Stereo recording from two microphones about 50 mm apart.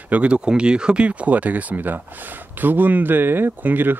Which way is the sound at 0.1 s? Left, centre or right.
Right.